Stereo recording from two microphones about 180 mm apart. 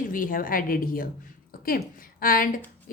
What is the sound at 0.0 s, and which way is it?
Speech, 50° left (ahead or behind).